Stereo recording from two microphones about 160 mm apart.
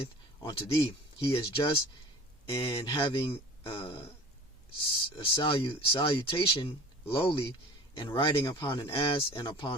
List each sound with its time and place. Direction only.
0.0 s speech: 35° left (ahead or behind)
5.1 s speech: 30° left (ahead or behind)